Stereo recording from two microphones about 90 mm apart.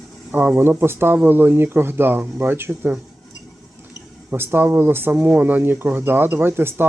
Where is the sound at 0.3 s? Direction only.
20° right (ahead or behind).